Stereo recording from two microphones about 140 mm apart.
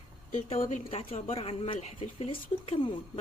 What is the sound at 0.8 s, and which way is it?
Speech, 45° left (ahead or behind).